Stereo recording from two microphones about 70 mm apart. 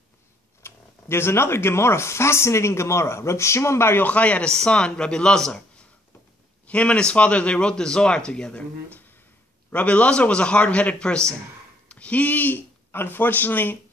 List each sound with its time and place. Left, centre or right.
0.6 s speech: left
4.0 s speech: centre
6.6 s speech: centre
9.7 s speech: left